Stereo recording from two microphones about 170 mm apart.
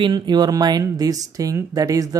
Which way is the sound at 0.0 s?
25° right (ahead or behind).